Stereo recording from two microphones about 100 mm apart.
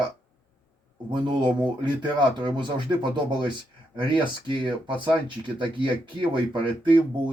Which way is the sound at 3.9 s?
55° right (ahead or behind).